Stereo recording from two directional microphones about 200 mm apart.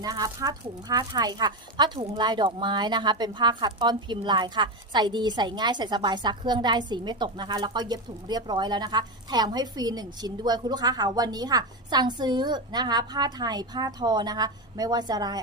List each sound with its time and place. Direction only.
0.0 s speech: 20° right (ahead or behind)